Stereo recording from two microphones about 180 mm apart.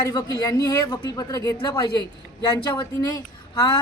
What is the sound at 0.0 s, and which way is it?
Speech, 20° left (ahead or behind).